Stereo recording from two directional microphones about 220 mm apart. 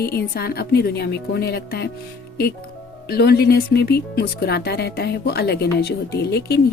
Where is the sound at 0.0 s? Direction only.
45° left (ahead or behind).